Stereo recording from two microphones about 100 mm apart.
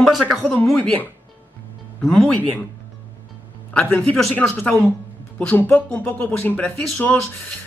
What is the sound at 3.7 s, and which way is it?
Speech, 15° left (ahead or behind).